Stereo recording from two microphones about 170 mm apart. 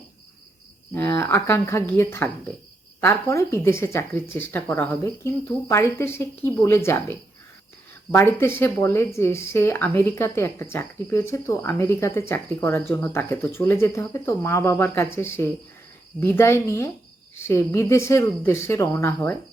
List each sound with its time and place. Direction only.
0.9 s speech: 15° left (ahead or behind)